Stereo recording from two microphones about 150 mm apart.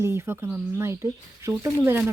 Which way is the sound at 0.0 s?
15° right (ahead or behind).